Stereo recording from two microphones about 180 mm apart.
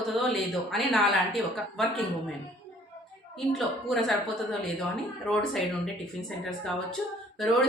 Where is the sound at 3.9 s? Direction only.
Centre (ahead or behind).